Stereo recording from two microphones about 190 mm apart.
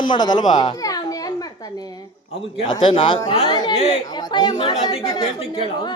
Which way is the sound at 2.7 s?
25° left (ahead or behind).